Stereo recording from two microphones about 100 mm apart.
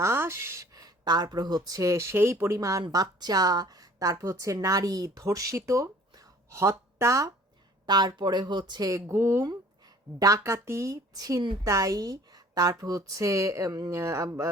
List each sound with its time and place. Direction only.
0.0 s a woman's voice: 25° right (ahead or behind)
7.9 s speech: 45° right (ahead or behind)